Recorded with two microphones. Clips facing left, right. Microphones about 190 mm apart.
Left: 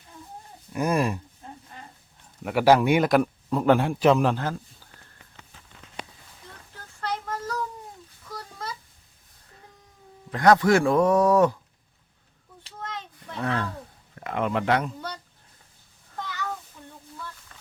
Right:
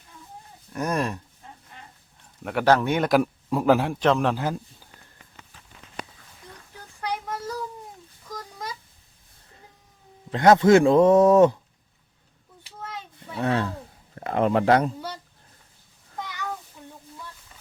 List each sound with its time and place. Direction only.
0.7 s speech: 10° left (ahead or behind)
2.4 s speech: 5° left (ahead or behind)
3.1 s speech: 5° right (ahead or behind)
4.4 s speech: 15° right (ahead or behind)
6.7 s child singing: 15° right (ahead or behind)
8.3 s a sound: 15° right (ahead or behind)
10.3 s speech: 25° right (ahead or behind)
12.8 s a sound: 10° right (ahead or behind)
13.4 s speech: 25° right (ahead or behind)
14.2 s speech: 35° right (ahead or behind)
16.1 s child singing: 10° right (ahead or behind)